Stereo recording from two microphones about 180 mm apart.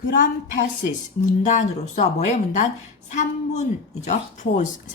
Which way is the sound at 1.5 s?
40° left (ahead or behind).